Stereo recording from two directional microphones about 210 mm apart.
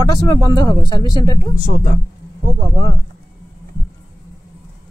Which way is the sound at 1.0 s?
20° right (ahead or behind).